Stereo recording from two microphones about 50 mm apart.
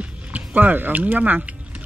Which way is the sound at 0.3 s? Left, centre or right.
Right.